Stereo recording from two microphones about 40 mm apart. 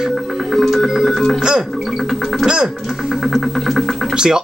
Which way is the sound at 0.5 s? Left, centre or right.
Centre.